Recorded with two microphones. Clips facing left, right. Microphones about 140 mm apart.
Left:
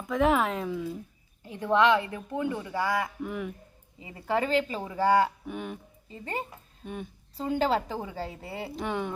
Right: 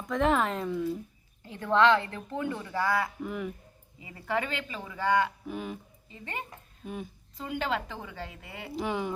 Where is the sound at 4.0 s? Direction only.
30° left (ahead or behind).